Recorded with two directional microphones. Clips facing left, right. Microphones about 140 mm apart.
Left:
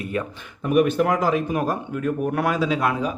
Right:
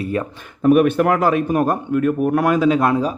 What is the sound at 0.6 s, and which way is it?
Speech, 50° right (ahead or behind).